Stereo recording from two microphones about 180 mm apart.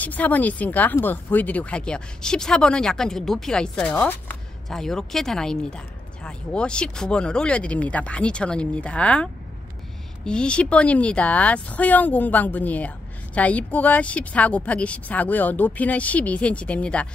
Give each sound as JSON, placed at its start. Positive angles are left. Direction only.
{"t": 0.0, "sound": "speech", "side_deg": 10}